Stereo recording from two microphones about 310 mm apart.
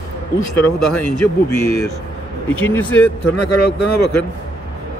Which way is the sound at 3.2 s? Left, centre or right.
Left.